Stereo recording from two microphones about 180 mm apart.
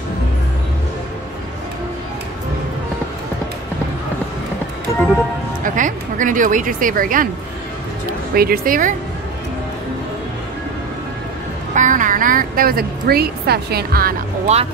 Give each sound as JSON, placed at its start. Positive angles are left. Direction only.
{"t": 5.6, "sound": "speech", "side_deg": -45}
{"t": 8.4, "sound": "speech", "side_deg": -55}
{"t": 11.7, "sound": "a woman's voice", "side_deg": -45}
{"t": 14.5, "sound": "speech", "side_deg": -40}